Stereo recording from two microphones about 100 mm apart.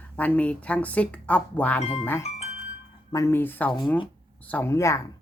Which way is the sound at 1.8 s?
90° left.